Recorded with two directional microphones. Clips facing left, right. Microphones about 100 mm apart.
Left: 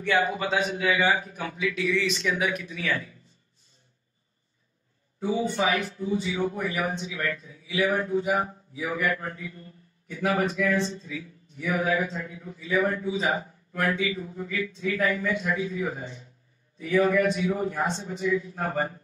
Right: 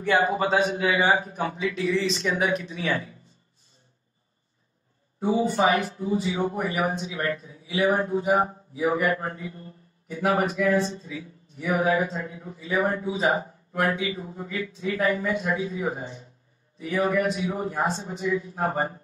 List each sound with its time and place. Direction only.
0.0 s a man's voice: 35° right (ahead or behind)
5.2 s a man's voice: 35° right (ahead or behind)